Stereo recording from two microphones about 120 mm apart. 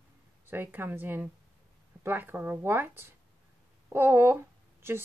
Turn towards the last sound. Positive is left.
turn(degrees=-20)  # may be behind; listen again after turning